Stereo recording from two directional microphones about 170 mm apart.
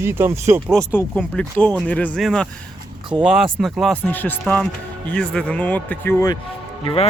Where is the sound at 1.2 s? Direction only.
5° left (ahead or behind); by 6.4 s 20° left (ahead or behind).